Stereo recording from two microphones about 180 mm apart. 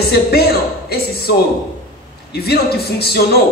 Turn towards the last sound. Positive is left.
turn(degrees=60)  # may be behind; listen again after turning